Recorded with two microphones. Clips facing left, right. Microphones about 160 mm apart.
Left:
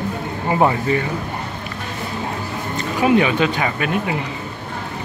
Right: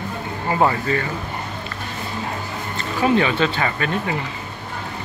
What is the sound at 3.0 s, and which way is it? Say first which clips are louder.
Speech: left 2 dB; 15° left (ahead or behind).